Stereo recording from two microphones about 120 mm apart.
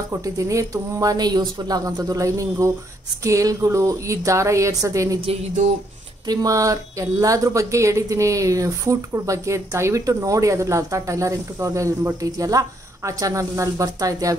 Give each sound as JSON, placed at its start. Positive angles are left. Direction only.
{"t": 0.1, "sound": "speech", "side_deg": -25}
{"t": 6.2, "sound": "speech", "side_deg": -30}